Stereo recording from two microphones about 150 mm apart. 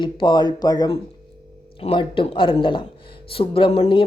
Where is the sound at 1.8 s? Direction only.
35° left (ahead or behind).